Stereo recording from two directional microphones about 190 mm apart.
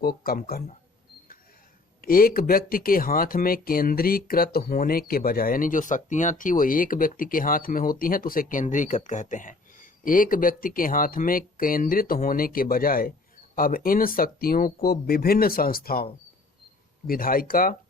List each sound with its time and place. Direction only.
0.0 s speech: 50° left (ahead or behind)
2.0 s speech: 50° left (ahead or behind)
17.1 s speech: 50° left (ahead or behind)